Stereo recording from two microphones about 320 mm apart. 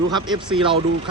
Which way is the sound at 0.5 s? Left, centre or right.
Centre.